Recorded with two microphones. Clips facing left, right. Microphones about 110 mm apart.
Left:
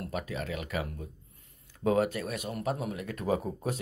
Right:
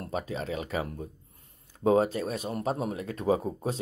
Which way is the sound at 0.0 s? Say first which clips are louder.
Right 2 dB; 30° right (ahead or behind).